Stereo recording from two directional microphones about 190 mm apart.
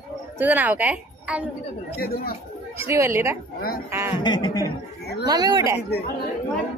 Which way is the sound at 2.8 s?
15° right (ahead or behind).